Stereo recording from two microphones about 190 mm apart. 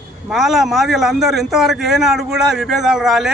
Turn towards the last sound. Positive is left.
turn(degrees=0)  # may be behind; listen again after turning